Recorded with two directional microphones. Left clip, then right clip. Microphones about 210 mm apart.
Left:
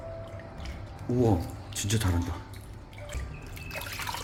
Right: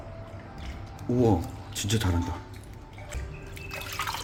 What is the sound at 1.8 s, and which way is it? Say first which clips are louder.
Speech: right 2 dB; 10° right (ahead or behind).